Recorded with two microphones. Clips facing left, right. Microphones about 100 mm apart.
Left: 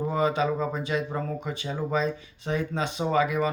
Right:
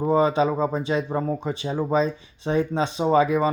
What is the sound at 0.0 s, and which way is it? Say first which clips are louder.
Speech: right 5 dB; 30° right (ahead or behind).